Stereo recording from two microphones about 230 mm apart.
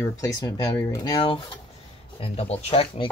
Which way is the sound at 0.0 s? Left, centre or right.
Centre.